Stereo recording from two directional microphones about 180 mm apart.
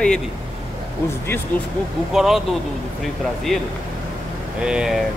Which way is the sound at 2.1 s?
Centre (ahead or behind).